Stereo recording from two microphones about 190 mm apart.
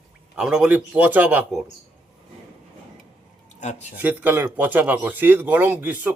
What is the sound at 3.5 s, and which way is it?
Speech, 40° left (ahead or behind).